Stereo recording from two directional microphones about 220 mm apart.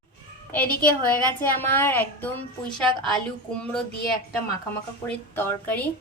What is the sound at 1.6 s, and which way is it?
A child's voice, 10° left (ahead or behind).